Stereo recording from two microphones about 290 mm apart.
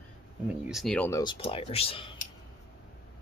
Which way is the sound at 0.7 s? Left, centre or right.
Centre.